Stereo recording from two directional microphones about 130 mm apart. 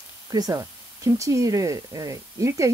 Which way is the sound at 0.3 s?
25° right (ahead or behind).